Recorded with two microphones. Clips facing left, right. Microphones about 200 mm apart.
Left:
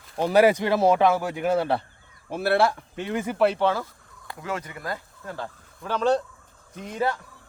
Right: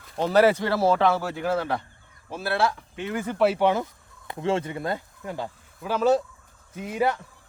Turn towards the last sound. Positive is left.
turn(degrees=-10)  # may be behind; listen again after turning